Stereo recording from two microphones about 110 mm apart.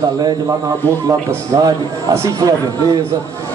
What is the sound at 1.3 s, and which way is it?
A man's voice, 25° right (ahead or behind).